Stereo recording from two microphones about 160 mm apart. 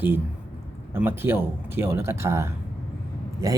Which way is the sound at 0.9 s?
15° right (ahead or behind).